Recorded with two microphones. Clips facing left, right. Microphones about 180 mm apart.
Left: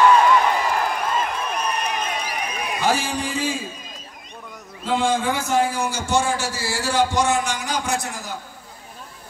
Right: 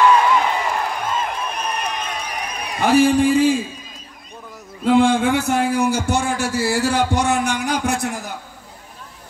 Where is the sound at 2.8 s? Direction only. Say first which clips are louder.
Right 10 dB; 55° right (ahead or behind).